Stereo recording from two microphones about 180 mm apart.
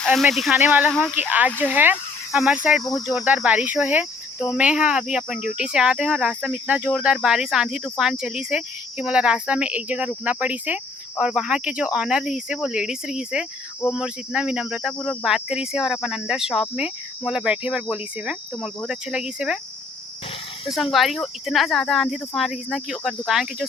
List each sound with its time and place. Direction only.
0.0 s speech: centre (ahead or behind)
0.9 s speech: 5° left (ahead or behind)
1.1 s speech: 10° right (ahead or behind)
1.5 s speech: 5° left (ahead or behind)
1.7 s speech: 10° right (ahead or behind)
2.8 s cricket: 20° left (ahead or behind)
3.2 s speech: 10° right (ahead or behind)
20.9 s speech: centre (ahead or behind)